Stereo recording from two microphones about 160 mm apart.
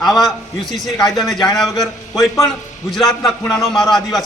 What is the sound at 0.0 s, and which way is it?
A man's voice, centre (ahead or behind).